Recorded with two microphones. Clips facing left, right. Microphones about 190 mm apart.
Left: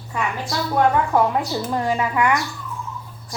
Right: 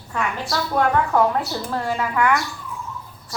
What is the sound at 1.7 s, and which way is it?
Speech, 15° left (ahead or behind).